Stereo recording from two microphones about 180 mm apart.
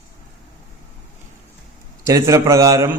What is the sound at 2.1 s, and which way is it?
Speech, 15° right (ahead or behind).